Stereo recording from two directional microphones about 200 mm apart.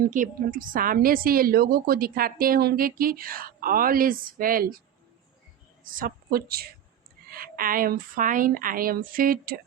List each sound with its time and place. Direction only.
0.0 s a woman's voice: 40° right (ahead or behind)
5.8 s a woman's voice: 45° right (ahead or behind)